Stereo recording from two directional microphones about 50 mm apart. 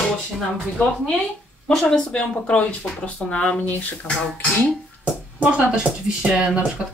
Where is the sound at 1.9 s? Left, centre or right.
Centre.